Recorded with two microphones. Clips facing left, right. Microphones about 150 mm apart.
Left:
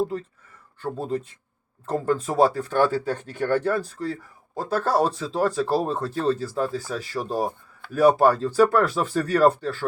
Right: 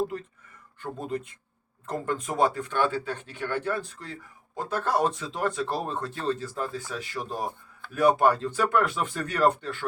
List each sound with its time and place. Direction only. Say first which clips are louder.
0.8 s speech: left 5 dB; 35° left (ahead or behind)